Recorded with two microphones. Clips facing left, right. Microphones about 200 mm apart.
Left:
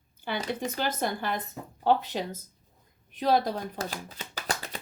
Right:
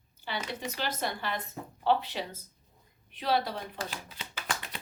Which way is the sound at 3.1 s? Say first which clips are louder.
Left 5 dB; 45° left (ahead or behind).